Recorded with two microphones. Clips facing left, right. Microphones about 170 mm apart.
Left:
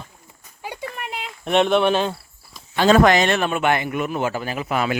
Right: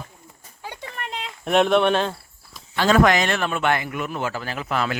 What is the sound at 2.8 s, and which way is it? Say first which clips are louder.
Speech: left 3 dB; 25° left (ahead or behind).